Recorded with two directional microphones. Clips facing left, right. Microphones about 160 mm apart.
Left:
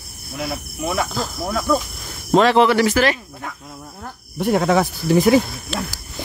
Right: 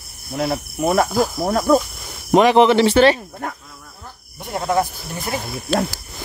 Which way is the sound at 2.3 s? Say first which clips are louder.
Right 2 dB; 15° right (ahead or behind).